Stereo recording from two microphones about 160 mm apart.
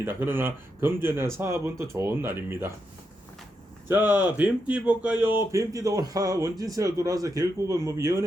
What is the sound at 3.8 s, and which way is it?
Speech, 15° right (ahead or behind).